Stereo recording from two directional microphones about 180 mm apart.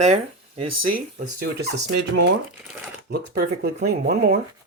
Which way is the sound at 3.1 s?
60° right (ahead or behind).